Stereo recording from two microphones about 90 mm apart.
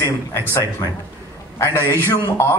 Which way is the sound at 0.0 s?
35° left (ahead or behind).